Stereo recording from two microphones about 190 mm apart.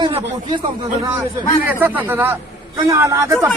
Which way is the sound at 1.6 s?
10° right (ahead or behind).